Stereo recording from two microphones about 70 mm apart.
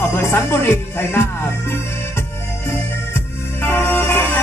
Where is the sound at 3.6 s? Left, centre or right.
Left.